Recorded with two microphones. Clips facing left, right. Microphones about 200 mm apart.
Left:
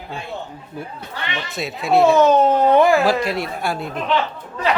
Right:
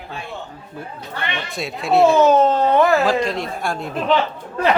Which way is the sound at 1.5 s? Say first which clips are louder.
Even; centre (ahead or behind).